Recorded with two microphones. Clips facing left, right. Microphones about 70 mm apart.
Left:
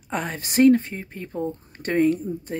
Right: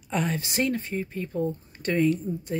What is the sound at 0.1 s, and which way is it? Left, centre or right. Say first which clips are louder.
Speech: even; left.